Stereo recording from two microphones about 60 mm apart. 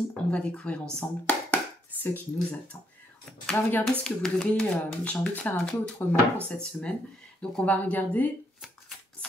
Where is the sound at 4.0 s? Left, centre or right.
Centre.